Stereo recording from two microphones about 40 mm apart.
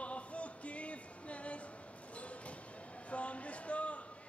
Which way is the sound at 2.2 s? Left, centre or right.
Left.